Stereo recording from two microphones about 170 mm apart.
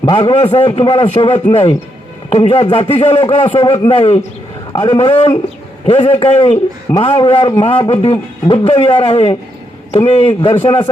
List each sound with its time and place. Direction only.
0.0 s a man's voice: 30° left (ahead or behind)